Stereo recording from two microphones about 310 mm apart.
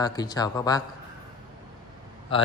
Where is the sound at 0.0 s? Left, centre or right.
Centre.